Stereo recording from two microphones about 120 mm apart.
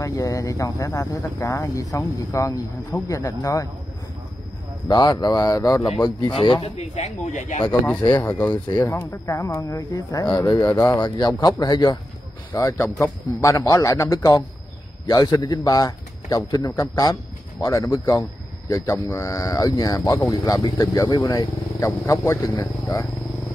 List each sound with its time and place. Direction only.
0.0 s speech: 30° left (ahead or behind)
4.8 s speech: 35° left (ahead or behind)
6.3 s speech: 50° left (ahead or behind)
6.8 s speech: 80° left
8.2 s a man's voice: 15° left (ahead or behind)